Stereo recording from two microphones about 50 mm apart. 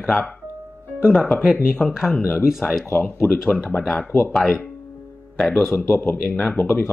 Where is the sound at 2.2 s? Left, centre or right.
Left.